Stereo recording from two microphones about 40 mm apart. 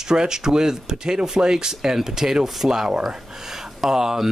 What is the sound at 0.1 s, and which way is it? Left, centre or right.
Speech, centre.